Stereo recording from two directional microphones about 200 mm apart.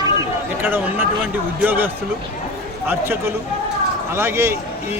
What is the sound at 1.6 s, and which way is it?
Speech, 10° right (ahead or behind).